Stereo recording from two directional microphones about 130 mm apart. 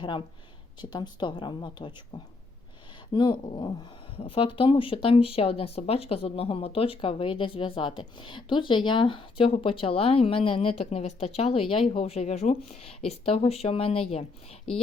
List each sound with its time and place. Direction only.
0.8 s a woman's voice: 35° left (ahead or behind)